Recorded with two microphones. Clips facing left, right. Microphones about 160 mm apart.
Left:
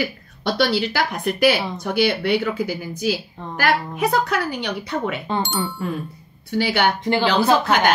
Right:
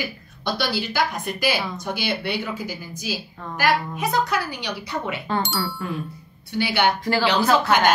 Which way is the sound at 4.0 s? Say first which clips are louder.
Left 3 dB; 55° left (ahead or behind).